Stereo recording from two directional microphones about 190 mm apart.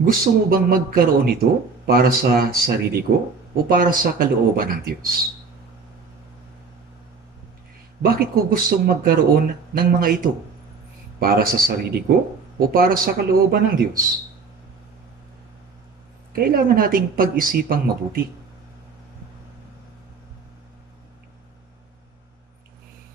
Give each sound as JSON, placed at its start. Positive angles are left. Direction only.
{"t": 0.0, "sound": "speech", "side_deg": -50}
{"t": 8.0, "sound": "speech", "side_deg": -50}
{"t": 16.3, "sound": "speech", "side_deg": -50}